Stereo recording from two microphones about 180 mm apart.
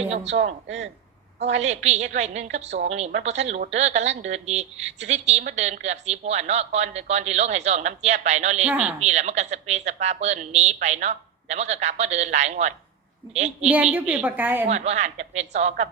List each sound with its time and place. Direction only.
0.0 s speech: 35° right (ahead or behind)
1.5 s speech: 40° right (ahead or behind)
8.6 s a woman's voice: 5° right (ahead or behind)
9.0 s speech: 40° right (ahead or behind)
13.7 s a woman's voice: 10° right (ahead or behind)
14.7 s speech: 40° right (ahead or behind)